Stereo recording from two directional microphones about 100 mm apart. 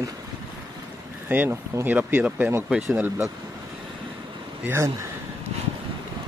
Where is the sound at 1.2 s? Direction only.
20° right (ahead or behind).